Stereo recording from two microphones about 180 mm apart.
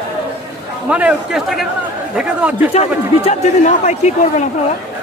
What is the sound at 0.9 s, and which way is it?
Speech, 5° right (ahead or behind).